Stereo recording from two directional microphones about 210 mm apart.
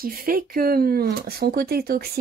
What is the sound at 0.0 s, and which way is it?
Speech, 45° right (ahead or behind).